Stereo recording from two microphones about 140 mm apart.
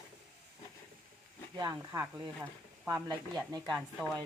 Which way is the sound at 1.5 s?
25° right (ahead or behind).